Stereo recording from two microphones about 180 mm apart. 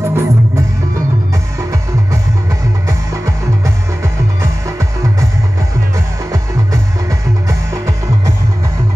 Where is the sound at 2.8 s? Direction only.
15° right (ahead or behind).